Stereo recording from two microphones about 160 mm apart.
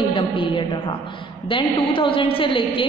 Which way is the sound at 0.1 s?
30° left (ahead or behind).